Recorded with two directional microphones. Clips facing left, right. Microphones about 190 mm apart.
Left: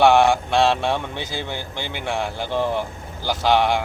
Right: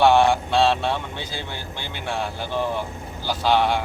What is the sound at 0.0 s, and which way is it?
Speech, 15° left (ahead or behind).